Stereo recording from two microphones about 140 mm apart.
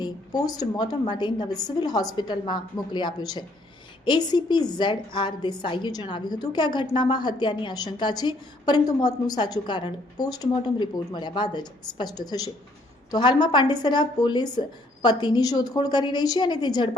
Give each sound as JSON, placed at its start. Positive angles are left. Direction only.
{"t": 0.0, "sound": "a woman's voice", "side_deg": 25}